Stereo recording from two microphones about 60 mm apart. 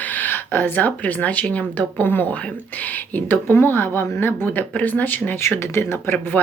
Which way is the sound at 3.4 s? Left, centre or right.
Left.